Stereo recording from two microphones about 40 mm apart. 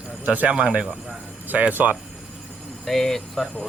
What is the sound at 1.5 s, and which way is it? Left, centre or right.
Speech, right.